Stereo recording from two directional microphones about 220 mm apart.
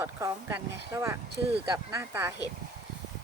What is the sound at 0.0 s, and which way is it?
Speech, 15° right (ahead or behind).